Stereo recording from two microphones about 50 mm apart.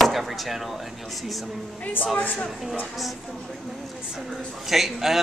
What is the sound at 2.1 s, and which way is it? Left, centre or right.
Speech, left.